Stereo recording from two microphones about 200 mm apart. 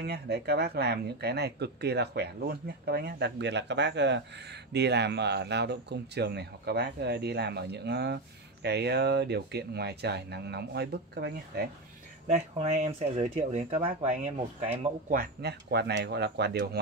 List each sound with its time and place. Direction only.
0.0 s speech: 55° right (ahead or behind)
12.3 s speech: 30° right (ahead or behind)
15.0 s speech: 50° right (ahead or behind)